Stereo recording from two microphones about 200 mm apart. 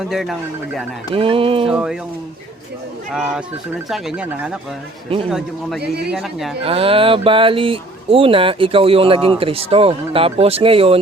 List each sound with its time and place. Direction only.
0.1 s a man's voice: centre (ahead or behind)
1.1 s speech: 25° right (ahead or behind)
1.6 s a man's voice: 5° right (ahead or behind)
3.1 s a man's voice: 5° right (ahead or behind)
6.1 s a man's voice: 5° right (ahead or behind)
6.6 s speech: 30° right (ahead or behind)